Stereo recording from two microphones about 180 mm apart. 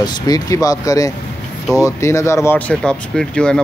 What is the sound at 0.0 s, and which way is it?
Speech, 20° left (ahead or behind).